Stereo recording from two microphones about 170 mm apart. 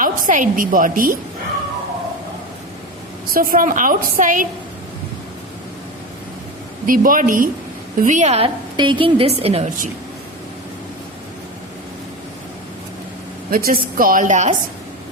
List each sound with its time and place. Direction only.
0.0 s a woman's voice: 50° right (ahead or behind)
3.3 s a woman's voice: 55° right (ahead or behind)
6.8 s a woman's voice: 55° right (ahead or behind)
8.7 s a woman's voice: 30° right (ahead or behind); by 9.9 s 50° right (ahead or behind)
13.5 s a woman's voice: 60° right (ahead or behind)